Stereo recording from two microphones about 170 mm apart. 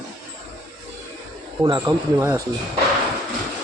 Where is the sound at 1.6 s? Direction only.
25° right (ahead or behind).